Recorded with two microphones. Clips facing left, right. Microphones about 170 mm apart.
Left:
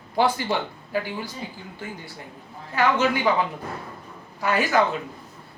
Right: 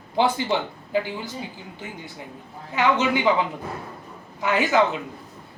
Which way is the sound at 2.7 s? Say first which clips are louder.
Even; 20° right (ahead or behind).